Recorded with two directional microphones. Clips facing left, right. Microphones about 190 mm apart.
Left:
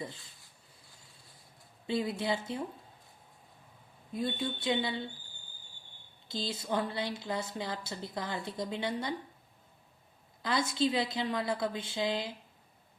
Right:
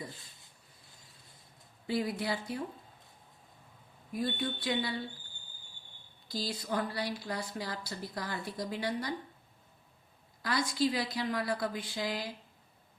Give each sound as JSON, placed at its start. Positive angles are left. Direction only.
{"t": 0.2, "sound": "a sound", "side_deg": -20}
{"t": 1.9, "sound": "a woman's voice", "side_deg": 25}
{"t": 4.1, "sound": "a woman's voice", "side_deg": 25}
{"t": 6.2, "sound": "a woman's voice", "side_deg": 25}
{"t": 10.4, "sound": "a woman's voice", "side_deg": 25}